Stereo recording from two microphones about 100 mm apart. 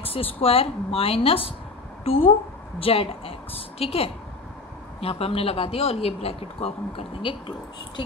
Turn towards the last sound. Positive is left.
turn(degrees=70)  # may be behind; listen again after turning